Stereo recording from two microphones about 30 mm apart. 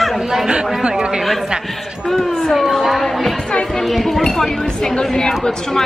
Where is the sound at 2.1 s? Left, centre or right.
Centre.